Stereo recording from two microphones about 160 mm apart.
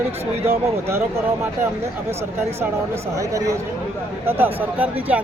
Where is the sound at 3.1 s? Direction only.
20° right (ahead or behind).